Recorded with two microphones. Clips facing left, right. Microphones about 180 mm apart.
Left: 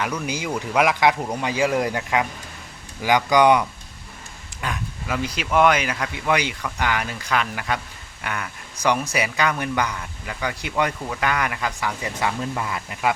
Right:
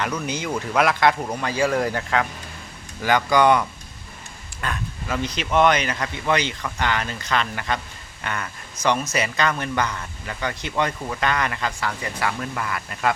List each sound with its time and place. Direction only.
0.0 s speech: 10° left (ahead or behind)